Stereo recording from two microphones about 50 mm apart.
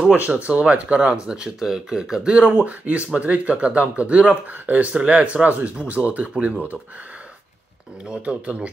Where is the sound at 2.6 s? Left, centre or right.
Right.